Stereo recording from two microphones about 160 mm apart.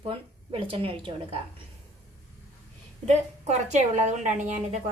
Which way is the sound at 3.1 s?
45° right (ahead or behind).